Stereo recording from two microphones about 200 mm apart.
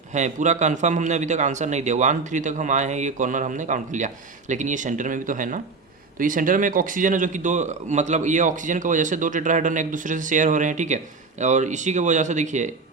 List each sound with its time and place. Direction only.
0.1 s speech: 35° right (ahead or behind)